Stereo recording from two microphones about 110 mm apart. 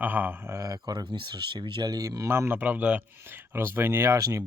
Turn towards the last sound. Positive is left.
turn(degrees=-30)  # may be behind; listen again after turning